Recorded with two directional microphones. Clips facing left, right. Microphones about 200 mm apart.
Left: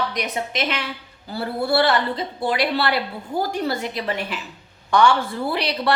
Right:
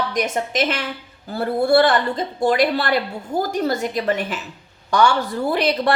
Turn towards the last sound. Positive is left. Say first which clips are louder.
# right 4 dB
turn(degrees=-50)  # may be behind; listen again after turning